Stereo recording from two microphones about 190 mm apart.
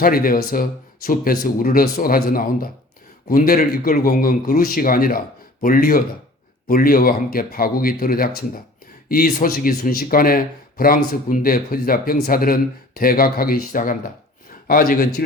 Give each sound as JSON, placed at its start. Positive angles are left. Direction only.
{"t": 0.0, "sound": "speech", "side_deg": 50}